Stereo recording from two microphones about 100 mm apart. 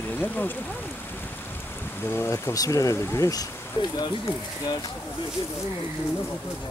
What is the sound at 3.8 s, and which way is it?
Speech, 55° left (ahead or behind).